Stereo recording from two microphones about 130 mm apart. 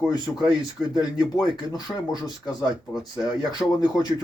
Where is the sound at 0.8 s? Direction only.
Centre (ahead or behind).